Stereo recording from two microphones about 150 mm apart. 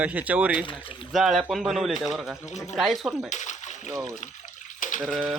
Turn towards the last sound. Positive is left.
turn(degrees=0)  # may be behind; listen again after turning